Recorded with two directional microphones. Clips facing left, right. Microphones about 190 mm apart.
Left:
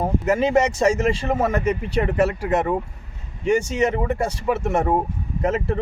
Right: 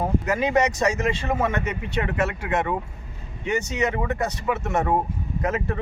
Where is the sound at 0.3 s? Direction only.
30° left (ahead or behind).